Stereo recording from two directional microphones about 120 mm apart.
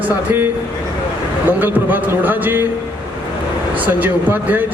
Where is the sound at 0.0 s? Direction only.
15° right (ahead or behind).